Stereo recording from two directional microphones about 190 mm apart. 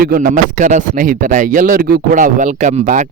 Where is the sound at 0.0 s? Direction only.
50° right (ahead or behind).